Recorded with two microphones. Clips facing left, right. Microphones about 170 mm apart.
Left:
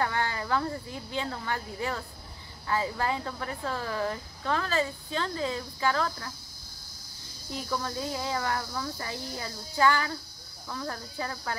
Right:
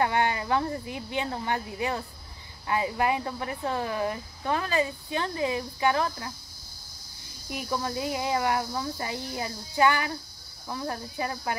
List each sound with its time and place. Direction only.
0.0 s speech: 20° right (ahead or behind)
7.4 s speech: 15° right (ahead or behind)